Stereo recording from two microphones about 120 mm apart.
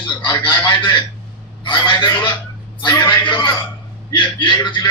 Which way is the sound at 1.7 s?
40° left (ahead or behind).